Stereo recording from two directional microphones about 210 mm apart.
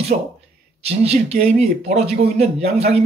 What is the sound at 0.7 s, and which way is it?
Speech, 30° right (ahead or behind).